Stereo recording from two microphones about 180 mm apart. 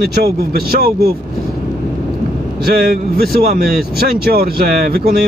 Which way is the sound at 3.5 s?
60° right (ahead or behind).